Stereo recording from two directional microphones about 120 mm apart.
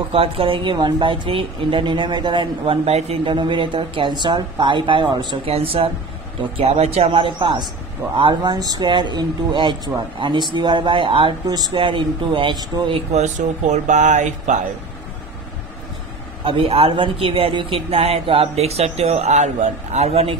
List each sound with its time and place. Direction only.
0.1 s speech: 50° right (ahead or behind)
3.3 s speech: 45° right (ahead or behind)
5.5 s speech: 50° right (ahead or behind)
7.1 s speech: 45° right (ahead or behind)
12.9 s speech: 70° right (ahead or behind); by 14.6 s 85° right
16.4 s speech: 50° right (ahead or behind)